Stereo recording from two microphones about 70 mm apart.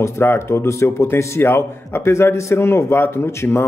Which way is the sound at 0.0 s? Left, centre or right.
Left.